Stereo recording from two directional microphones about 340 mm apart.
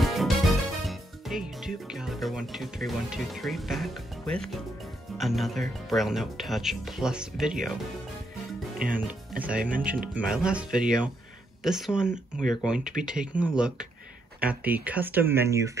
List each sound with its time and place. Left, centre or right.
0.0 s speech: centre
8.7 s speech: right
9.0 s speech: centre